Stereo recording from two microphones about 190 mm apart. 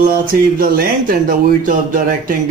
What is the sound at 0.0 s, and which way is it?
Speech, 45° right (ahead or behind).